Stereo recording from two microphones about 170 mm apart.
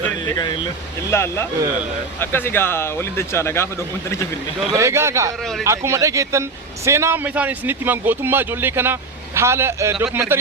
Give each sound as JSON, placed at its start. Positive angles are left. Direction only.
{"t": 0.3, "sound": "speech", "side_deg": 25}
{"t": 1.1, "sound": "speech", "side_deg": 15}
{"t": 4.7, "sound": "a man's voice", "side_deg": -15}